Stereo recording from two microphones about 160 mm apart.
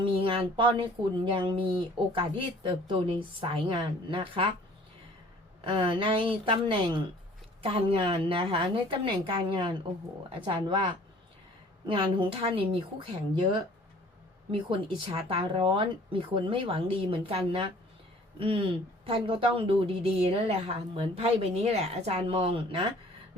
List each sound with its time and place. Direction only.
0.2 s speech: 35° right (ahead or behind)
5.6 s speech: 35° right (ahead or behind)
14.7 s speech: 35° right (ahead or behind)